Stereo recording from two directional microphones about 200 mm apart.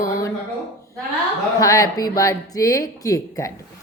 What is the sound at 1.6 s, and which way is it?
A woman's voice, 15° left (ahead or behind).